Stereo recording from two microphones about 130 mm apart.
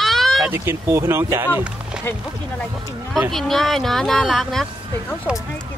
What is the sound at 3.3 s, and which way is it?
Speech, centre (ahead or behind).